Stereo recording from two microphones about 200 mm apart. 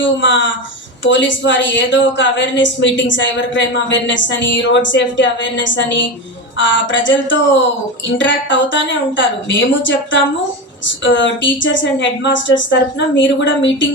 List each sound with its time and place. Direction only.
0.0 s a woman's voice: 65° left (ahead or behind)